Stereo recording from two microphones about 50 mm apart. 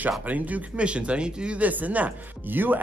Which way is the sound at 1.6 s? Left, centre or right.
Right.